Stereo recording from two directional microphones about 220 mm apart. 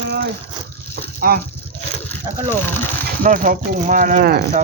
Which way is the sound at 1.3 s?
40° right (ahead or behind).